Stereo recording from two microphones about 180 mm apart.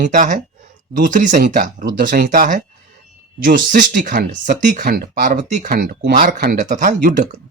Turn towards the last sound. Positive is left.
turn(degrees=-45)  # may be behind; listen again after turning